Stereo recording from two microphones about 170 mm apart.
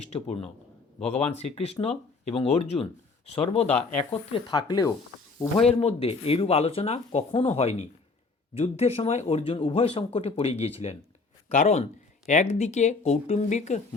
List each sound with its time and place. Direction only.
0.1 s speech: 40° left (ahead or behind)
5.8 s speech: 35° left (ahead or behind)